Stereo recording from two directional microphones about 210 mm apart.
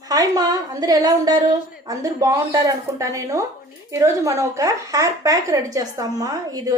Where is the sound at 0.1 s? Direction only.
20° right (ahead or behind).